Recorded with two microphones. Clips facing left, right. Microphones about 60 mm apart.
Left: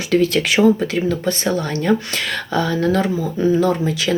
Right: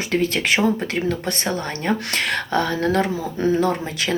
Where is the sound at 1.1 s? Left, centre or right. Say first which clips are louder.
Left 4 dB; right.